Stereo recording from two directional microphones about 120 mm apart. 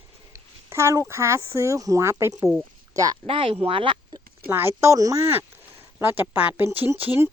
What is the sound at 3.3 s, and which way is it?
Speech, 50° right (ahead or behind).